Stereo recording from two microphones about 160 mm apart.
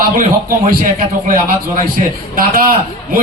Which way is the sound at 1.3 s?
55° right (ahead or behind).